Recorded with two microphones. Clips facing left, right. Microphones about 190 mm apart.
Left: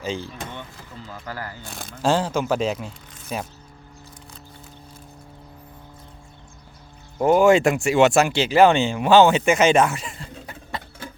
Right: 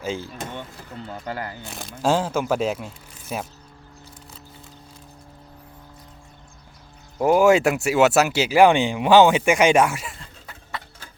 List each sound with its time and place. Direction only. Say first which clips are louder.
1.0 s speech: right 3 dB; 25° right (ahead or behind)
1.6 s speech: even; centre (ahead or behind)
7.2 s speech: left 1 dB; 5° right (ahead or behind)
10.4 s horse: left 1 dB; 20° left (ahead or behind)